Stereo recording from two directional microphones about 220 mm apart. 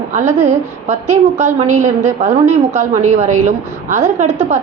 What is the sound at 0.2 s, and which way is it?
A woman's voice, 30° right (ahead or behind).